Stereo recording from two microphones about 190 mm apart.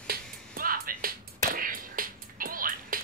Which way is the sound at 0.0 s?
50° right (ahead or behind).